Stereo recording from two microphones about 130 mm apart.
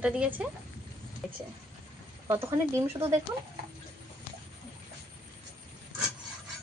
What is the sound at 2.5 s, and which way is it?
Speech, 20° right (ahead or behind).